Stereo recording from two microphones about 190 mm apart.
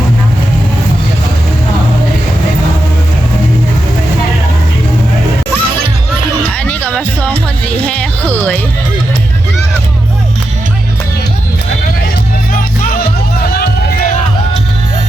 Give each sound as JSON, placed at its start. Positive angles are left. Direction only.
{"t": 6.7, "sound": "music", "side_deg": 5}
{"t": 13.5, "sound": "music", "side_deg": 55}